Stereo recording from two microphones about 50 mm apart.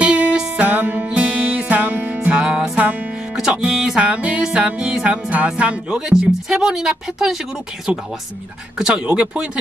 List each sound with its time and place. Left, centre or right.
0.0 s music: centre
0.6 s music: right
1.1 s music: right
2.3 s music: centre
4.0 s music: right
5.1 s speech: right; by 7.3 s centre
8.7 s speech: centre